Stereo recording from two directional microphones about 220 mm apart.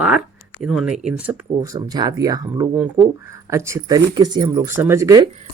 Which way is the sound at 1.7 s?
20° right (ahead or behind).